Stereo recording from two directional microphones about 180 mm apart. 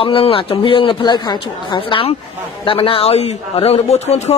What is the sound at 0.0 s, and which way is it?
A man's voice, 30° left (ahead or behind).